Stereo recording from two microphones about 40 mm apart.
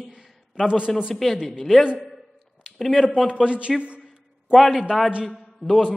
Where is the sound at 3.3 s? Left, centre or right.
Right.